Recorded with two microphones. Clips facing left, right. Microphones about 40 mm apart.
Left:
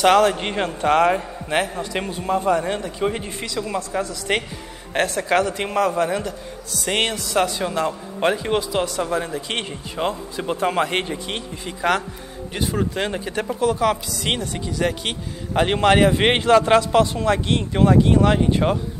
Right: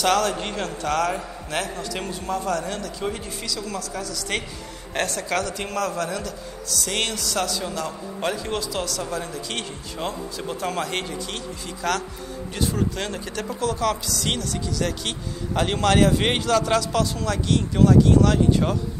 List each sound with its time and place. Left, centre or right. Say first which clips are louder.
0.0 s a man's voice: left 6 dB; left